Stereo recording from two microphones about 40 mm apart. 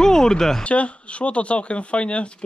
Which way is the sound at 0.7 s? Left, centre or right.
Left.